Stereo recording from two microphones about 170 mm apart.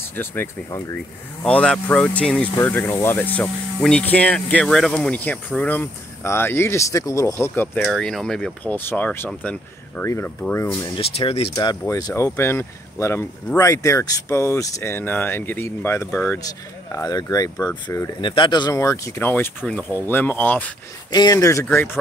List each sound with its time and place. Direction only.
0.1 s speech: 15° left (ahead or behind)
0.9 s speech: 5° left (ahead or behind)
11.0 s speech: 35° left (ahead or behind)
11.5 s speech: 20° left (ahead or behind)
18.2 s speech: 30° left (ahead or behind); by 20.7 s 10° left (ahead or behind)
21.1 s speech: 25° left (ahead or behind)